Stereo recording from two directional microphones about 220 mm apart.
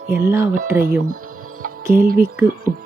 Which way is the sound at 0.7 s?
5° right (ahead or behind).